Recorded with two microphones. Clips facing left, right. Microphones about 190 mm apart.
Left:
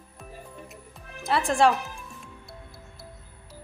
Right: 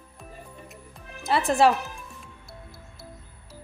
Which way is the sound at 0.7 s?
Centre (ahead or behind).